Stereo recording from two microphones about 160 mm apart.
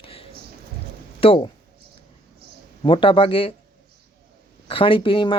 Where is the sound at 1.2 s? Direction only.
35° left (ahead or behind).